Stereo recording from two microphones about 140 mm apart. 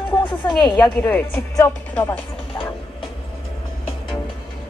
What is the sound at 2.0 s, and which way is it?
Music, 30° left (ahead or behind).